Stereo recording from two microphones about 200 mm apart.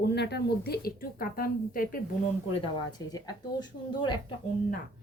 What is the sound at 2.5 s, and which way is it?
A woman's voice, 20° left (ahead or behind).